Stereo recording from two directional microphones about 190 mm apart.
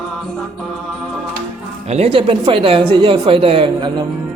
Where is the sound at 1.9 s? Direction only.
35° right (ahead or behind).